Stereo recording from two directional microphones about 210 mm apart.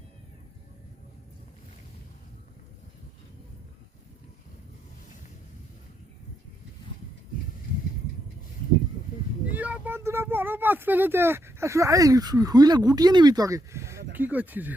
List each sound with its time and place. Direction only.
9.6 s speech: 5° right (ahead or behind)